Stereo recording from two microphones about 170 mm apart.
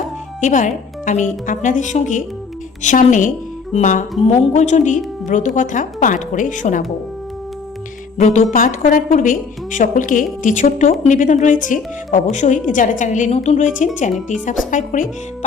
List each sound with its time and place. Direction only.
0.4 s a woman's voice: 50° left (ahead or behind)
8.2 s a woman's voice: 45° left (ahead or behind)
14.7 s a woman's voice: 50° left (ahead or behind)